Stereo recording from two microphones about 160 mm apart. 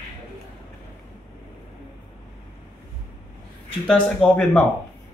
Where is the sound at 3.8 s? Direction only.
5° left (ahead or behind).